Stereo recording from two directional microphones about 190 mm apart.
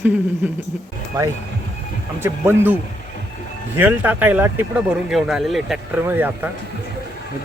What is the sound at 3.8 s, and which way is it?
Speech, 10° right (ahead or behind).